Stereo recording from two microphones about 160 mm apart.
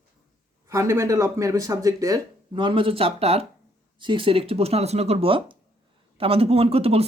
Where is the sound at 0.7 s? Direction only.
15° right (ahead or behind).